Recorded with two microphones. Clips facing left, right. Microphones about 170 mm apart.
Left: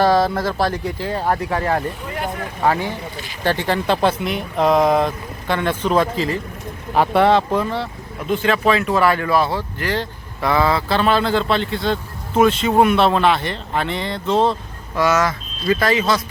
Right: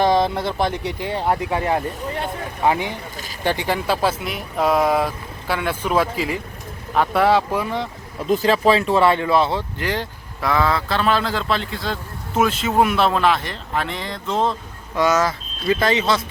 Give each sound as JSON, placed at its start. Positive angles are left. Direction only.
{"t": 0.0, "sound": "speech", "side_deg": -20}
{"t": 6.9, "sound": "speech", "side_deg": 0}
{"t": 8.3, "sound": "speech", "side_deg": -35}
{"t": 10.4, "sound": "speech", "side_deg": 5}
{"t": 15.6, "sound": "speech", "side_deg": -25}